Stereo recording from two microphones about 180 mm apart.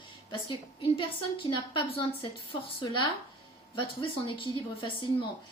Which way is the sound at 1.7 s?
30° left (ahead or behind).